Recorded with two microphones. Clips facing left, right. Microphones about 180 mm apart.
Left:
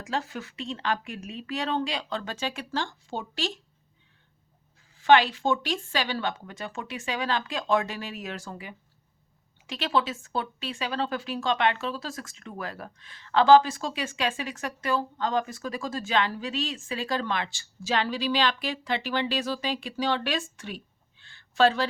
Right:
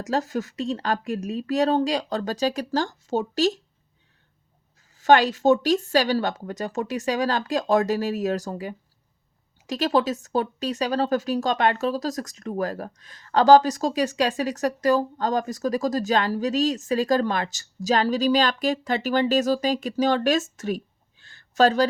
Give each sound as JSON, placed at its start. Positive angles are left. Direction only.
{"t": 0.0, "sound": "speech", "side_deg": -40}
{"t": 4.9, "sound": "speech", "side_deg": -40}